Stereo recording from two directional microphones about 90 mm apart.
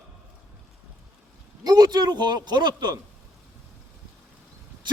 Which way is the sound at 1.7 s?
45° right (ahead or behind).